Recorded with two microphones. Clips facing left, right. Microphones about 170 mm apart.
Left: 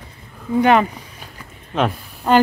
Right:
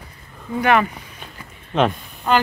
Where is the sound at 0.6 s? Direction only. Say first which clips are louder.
Left 3 dB; 25° left (ahead or behind).